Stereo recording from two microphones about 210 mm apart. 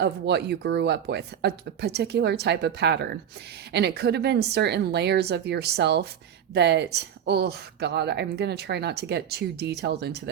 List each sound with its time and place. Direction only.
0.0 s speech: 55° right (ahead or behind)